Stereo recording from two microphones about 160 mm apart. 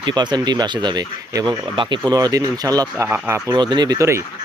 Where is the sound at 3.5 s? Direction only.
30° right (ahead or behind).